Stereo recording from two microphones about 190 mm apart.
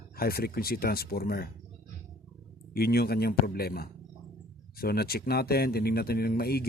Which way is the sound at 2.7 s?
55° left (ahead or behind).